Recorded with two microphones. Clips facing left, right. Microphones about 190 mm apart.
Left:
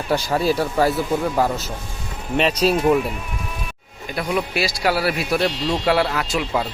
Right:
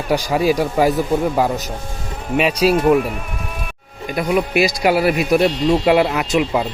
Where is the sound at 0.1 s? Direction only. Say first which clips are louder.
Right 3 dB; 10° right (ahead or behind).